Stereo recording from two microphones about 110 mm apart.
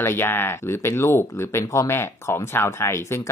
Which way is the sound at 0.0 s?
20° left (ahead or behind).